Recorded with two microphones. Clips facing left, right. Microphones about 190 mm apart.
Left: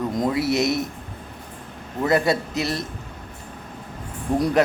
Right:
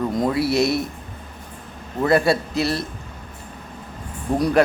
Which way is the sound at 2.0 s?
20° left (ahead or behind).